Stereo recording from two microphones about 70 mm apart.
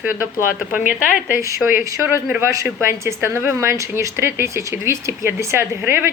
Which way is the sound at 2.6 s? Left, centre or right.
Right.